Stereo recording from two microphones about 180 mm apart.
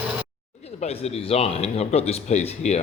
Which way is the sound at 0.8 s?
35° left (ahead or behind).